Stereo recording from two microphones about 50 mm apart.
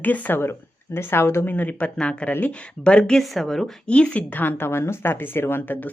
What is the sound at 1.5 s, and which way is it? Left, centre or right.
A woman's voice, left.